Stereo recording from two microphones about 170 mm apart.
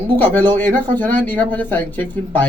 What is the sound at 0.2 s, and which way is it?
Speech, 10° left (ahead or behind).